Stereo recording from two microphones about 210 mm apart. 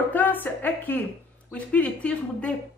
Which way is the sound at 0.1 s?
10° left (ahead or behind).